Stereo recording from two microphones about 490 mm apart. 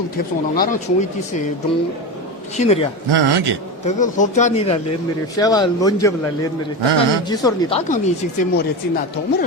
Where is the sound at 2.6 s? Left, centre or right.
Centre.